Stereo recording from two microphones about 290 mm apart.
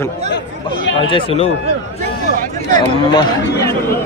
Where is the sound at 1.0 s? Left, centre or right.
Centre.